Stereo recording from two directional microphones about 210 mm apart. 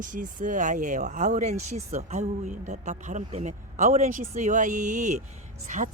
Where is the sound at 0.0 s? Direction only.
40° right (ahead or behind).